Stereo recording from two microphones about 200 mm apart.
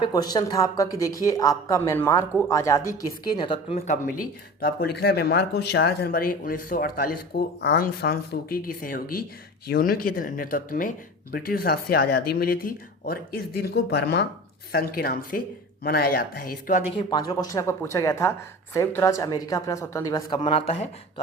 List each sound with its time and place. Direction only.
0.0 s speech: 20° left (ahead or behind)
4.6 s speech: 50° left (ahead or behind)
16.9 s speech: 25° left (ahead or behind)